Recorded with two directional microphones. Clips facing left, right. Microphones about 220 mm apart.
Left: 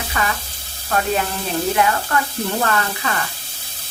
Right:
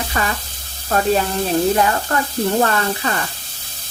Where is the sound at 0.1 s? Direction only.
40° right (ahead or behind).